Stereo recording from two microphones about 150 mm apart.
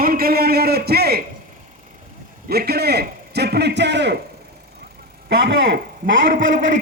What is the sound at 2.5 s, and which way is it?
A man's voice, 90° right.